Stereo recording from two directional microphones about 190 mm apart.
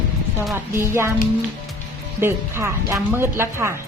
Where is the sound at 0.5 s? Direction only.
15° right (ahead or behind).